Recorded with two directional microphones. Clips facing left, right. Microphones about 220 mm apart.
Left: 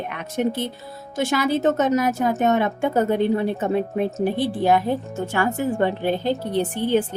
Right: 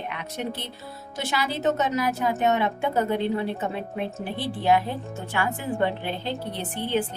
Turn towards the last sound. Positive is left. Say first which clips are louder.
# left 7 dB
turn(degrees=45)  # may be behind; listen again after turning